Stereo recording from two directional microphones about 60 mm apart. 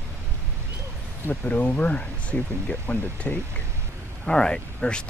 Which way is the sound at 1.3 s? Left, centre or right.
Left.